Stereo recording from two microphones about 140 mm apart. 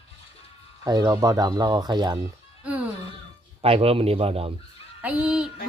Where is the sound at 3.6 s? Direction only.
45° right (ahead or behind).